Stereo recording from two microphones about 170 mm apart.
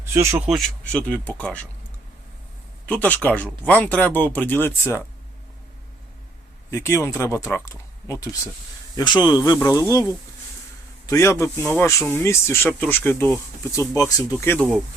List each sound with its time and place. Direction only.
0.0 s speech: 15° right (ahead or behind)
0.4 s speech: centre (ahead or behind)
2.8 s speech: 10° left (ahead or behind)
6.7 s speech: 15° left (ahead or behind)
11.0 s speech: 20° left (ahead or behind)